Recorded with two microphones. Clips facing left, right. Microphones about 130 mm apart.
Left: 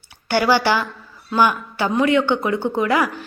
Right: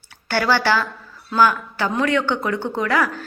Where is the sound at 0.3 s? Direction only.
15° left (ahead or behind).